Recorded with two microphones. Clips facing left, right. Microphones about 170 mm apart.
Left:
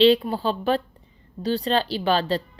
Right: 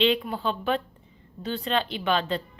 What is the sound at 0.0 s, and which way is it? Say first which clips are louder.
A woman's voice: left 6 dB; 35° left (ahead or behind).